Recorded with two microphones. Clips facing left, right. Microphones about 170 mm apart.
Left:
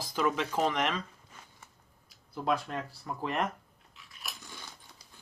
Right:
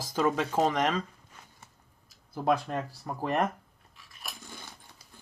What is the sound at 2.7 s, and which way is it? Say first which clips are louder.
Speech: right 3 dB; 45° right (ahead or behind).